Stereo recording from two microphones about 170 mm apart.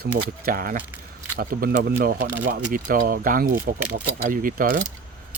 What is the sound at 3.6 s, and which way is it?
Speech, 75° right (ahead or behind).